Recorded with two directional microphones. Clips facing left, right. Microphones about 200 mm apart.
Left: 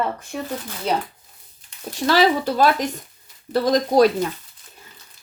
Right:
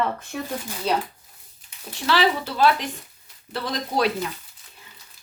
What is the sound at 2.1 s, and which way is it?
Speech, 40° left (ahead or behind).